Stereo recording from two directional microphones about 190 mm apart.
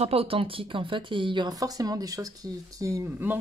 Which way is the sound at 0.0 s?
30° right (ahead or behind).